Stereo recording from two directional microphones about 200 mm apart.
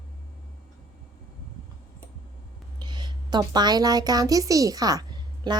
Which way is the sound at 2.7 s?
20° right (ahead or behind).